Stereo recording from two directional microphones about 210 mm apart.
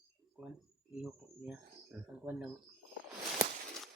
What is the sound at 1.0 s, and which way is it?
Speech, 5° right (ahead or behind).